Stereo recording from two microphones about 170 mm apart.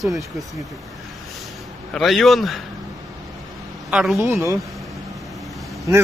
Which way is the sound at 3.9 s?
5° right (ahead or behind).